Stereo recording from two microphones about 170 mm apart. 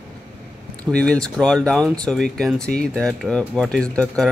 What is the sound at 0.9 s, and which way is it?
Speech, 5° left (ahead or behind).